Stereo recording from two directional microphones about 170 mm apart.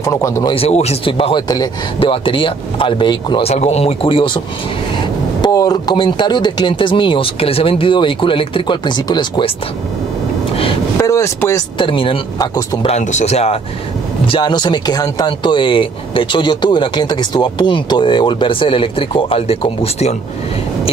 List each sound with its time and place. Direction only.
0.0 s speech: 15° left (ahead or behind)
0.6 s speech: 40° left (ahead or behind)
5.4 s speech: 20° left (ahead or behind)
10.5 s vehicle: 30° left (ahead or behind)
11.0 s speech: 15° left (ahead or behind)
11.8 s speech: 30° left (ahead or behind)
12.8 s speech: 45° left (ahead or behind)
14.2 s speech: 30° left (ahead or behind)